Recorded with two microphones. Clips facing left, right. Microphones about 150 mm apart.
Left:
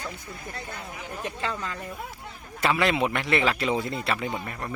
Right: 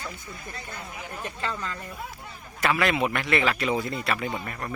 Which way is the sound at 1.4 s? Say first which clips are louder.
Even; 15° left (ahead or behind).